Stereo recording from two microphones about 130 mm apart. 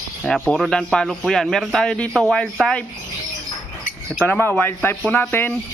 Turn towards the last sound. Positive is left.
turn(degrees=15)  # may be behind; listen again after turning